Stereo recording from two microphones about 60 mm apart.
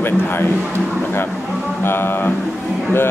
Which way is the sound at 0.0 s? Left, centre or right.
Left.